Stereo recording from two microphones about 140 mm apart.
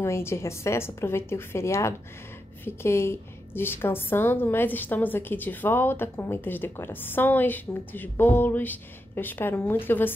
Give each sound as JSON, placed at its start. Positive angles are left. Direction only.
{"t": 0.0, "sound": "a woman's voice", "side_deg": 20}